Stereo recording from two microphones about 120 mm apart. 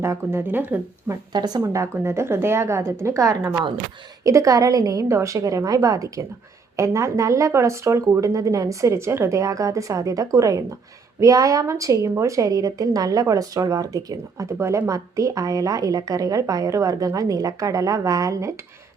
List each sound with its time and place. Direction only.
0.0 s a woman's voice: 20° right (ahead or behind)
1.3 s a woman's voice: 35° right (ahead or behind)